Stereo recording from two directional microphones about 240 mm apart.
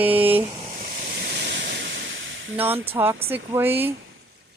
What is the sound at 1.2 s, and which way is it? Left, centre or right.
Waterfall, right.